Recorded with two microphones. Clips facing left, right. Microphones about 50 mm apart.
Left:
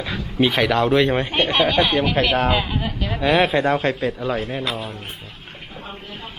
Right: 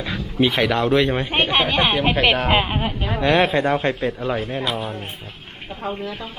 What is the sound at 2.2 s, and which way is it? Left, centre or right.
Speech, centre.